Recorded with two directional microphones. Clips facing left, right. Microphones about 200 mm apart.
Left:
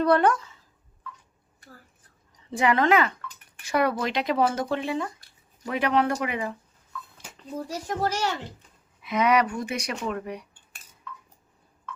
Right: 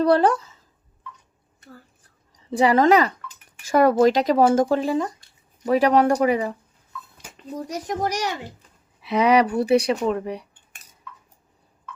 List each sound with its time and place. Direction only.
0.0 s speech: 30° right (ahead or behind)
2.3 s a woman's voice: 35° right (ahead or behind)
7.3 s speech: 20° right (ahead or behind)
9.0 s speech: 30° right (ahead or behind)